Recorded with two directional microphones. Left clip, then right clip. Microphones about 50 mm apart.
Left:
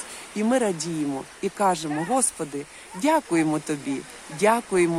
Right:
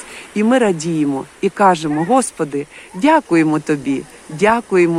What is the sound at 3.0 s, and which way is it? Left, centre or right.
Speech, right.